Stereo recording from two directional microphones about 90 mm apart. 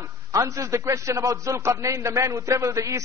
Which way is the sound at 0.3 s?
35° right (ahead or behind).